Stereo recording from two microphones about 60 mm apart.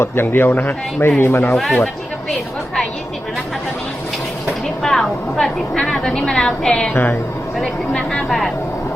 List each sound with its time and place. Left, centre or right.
0.0 s speech: left
1.5 s speech: centre
4.8 s a woman's voice: centre
6.9 s speech: left
7.6 s speech: centre